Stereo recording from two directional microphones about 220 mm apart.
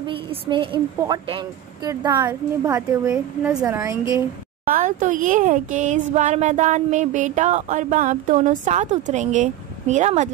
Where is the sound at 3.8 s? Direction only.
15° right (ahead or behind).